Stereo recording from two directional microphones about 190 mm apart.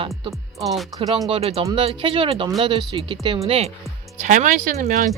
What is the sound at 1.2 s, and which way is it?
Speech, 30° right (ahead or behind).